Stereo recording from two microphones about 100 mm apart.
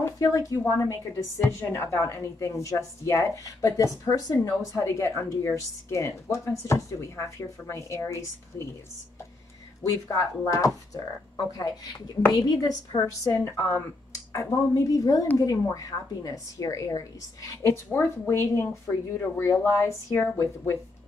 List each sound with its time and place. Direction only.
0.2 s a woman's voice: 35° left (ahead or behind)
9.8 s a woman's voice: 35° left (ahead or behind)